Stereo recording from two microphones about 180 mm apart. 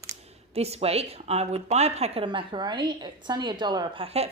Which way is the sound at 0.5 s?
35° right (ahead or behind).